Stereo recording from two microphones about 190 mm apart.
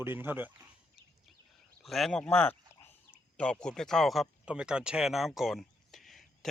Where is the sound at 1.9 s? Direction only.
Centre (ahead or behind).